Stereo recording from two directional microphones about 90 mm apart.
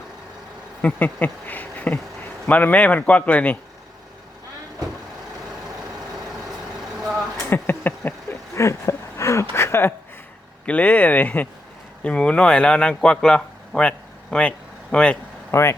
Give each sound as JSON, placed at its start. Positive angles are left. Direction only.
{"t": 0.8, "sound": "speech", "side_deg": 15}
{"t": 7.5, "sound": "a sound", "side_deg": 20}
{"t": 10.7, "sound": "a man's voice", "side_deg": 15}
{"t": 15.5, "sound": "speech", "side_deg": 30}